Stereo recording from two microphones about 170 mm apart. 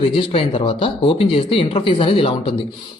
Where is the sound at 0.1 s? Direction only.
30° left (ahead or behind).